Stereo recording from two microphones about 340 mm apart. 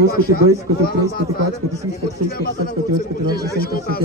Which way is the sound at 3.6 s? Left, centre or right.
Left.